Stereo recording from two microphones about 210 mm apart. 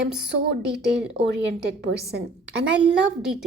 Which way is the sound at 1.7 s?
55° right (ahead or behind).